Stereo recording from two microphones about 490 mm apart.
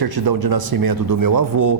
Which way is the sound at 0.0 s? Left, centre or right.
Right.